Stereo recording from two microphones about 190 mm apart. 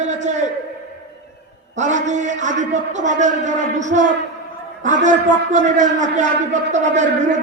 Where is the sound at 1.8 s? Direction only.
40° right (ahead or behind).